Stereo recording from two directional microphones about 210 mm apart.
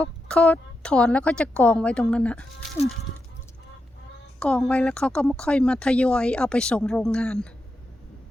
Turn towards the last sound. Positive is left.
turn(degrees=5)  # may be behind; listen again after turning